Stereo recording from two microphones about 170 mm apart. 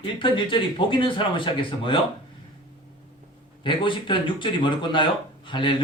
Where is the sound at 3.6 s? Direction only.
30° left (ahead or behind).